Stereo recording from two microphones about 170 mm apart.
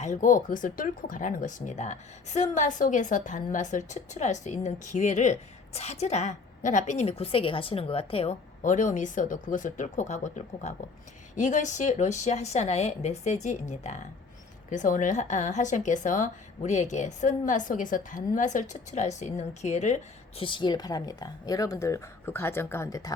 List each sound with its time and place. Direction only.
0.0 s a woman's voice: 45° left (ahead or behind)
8.6 s a woman's voice: 50° left (ahead or behind); by 23.1 s 20° left (ahead or behind)